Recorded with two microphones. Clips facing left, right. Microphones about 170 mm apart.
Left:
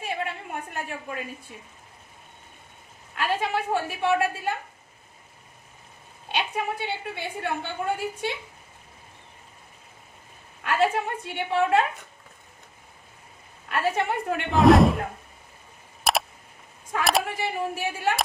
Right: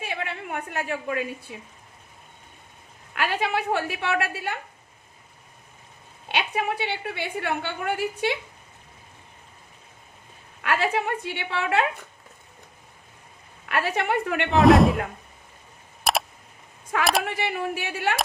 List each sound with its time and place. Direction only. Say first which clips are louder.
0.0 s a sound: left 1 dB; 75° right (ahead or behind)
3.2 s a woman's voice: right 1 dB; 70° right (ahead or behind)
6.3 s a woman's voice: right 2 dB; 75° right (ahead or behind)
10.6 s a woman's voice: left 1 dB; 70° right (ahead or behind)
13.7 s a woman's voice: even; 75° right (ahead or behind)
14.5 s speech: even; centre (ahead or behind)
16.1 s a sound: even; centre (ahead or behind)
17.0 s speech: even; centre (ahead or behind)
17.3 s a woman's voice: right 1 dB; 70° right (ahead or behind)